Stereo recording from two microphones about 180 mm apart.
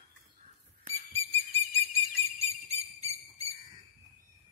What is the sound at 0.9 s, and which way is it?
Whistle, 35° right (ahead or behind).